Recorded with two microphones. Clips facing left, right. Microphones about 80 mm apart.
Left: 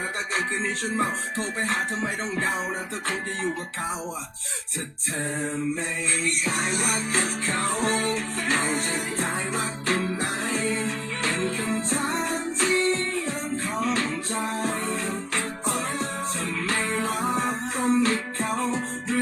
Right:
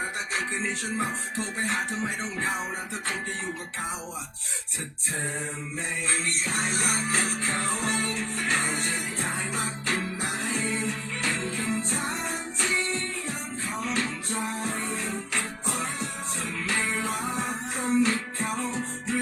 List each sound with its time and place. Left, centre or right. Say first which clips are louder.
0.9 s music: left 3 dB; left
6.4 s music: left 2 dB; left
7.9 s music: left 5 dB; left
8.5 s music: left 4 dB; left
11.8 s music: left 4 dB; left
16.6 s music: left 2 dB; left